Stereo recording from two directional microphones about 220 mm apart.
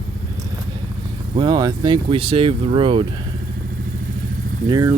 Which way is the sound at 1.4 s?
20° right (ahead or behind).